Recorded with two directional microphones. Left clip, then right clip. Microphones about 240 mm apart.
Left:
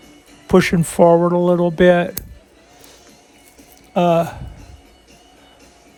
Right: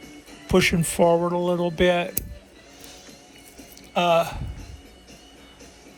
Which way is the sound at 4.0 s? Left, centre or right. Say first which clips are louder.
Left 4 dB; left.